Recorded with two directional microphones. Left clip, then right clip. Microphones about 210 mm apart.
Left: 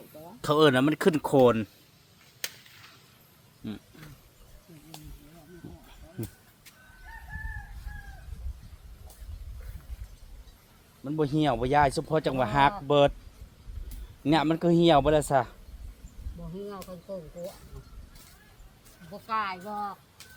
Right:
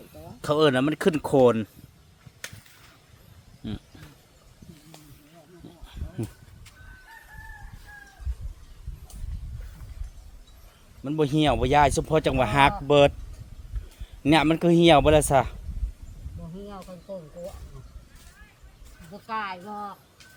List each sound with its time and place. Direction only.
0.4 s speech: centre (ahead or behind)
3.6 s speech: 20° right (ahead or behind)
11.0 s speech: 35° right (ahead or behind)
14.3 s speech: 35° right (ahead or behind)
16.6 s speech: 10° left (ahead or behind)
19.1 s speech: 10° left (ahead or behind)